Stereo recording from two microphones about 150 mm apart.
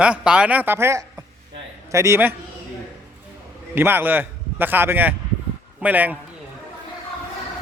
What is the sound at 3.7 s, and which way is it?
A man's voice, 15° right (ahead or behind).